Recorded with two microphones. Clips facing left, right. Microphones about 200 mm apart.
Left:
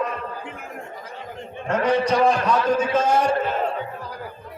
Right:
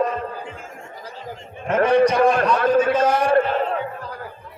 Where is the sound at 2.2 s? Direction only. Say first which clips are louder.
Right 2 dB; 60° right (ahead or behind).